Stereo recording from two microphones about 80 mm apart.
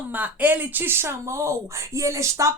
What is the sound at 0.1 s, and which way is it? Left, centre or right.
A woman's voice, right.